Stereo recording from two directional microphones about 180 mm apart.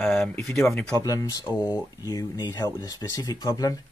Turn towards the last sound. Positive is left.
turn(degrees=20)  # may be behind; listen again after turning